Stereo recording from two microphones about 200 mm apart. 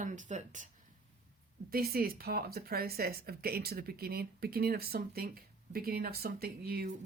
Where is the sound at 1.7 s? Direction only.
50° right (ahead or behind).